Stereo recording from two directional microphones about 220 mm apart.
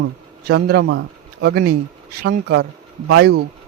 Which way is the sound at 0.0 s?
45° right (ahead or behind).